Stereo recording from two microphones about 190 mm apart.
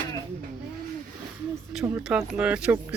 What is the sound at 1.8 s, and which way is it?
Speech, 10° right (ahead or behind).